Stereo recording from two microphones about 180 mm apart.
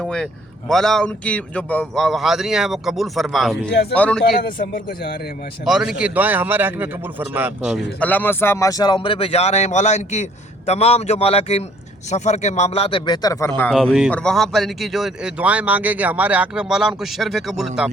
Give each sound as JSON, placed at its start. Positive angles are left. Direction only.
{"t": 0.0, "sound": "speech", "side_deg": 5}
{"t": 3.7, "sound": "speech", "side_deg": 65}
{"t": 3.9, "sound": "speech", "side_deg": 10}
{"t": 4.2, "sound": "a man's voice", "side_deg": 50}
{"t": 5.6, "sound": "a man's voice", "side_deg": -5}
{"t": 7.9, "sound": "a man's voice", "side_deg": 10}
{"t": 13.6, "sound": "speech", "side_deg": 5}